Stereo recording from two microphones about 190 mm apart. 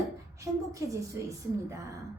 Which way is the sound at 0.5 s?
15° right (ahead or behind).